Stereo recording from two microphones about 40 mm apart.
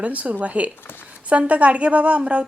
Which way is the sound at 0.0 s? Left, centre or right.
Right.